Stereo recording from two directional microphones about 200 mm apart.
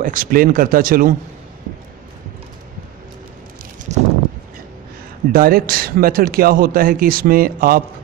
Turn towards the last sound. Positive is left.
turn(degrees=-45)  # may be behind; listen again after turning